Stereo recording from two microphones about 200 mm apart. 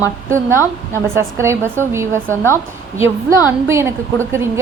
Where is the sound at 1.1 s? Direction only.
15° right (ahead or behind).